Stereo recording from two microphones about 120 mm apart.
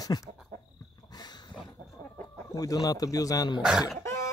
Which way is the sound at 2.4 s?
30° left (ahead or behind).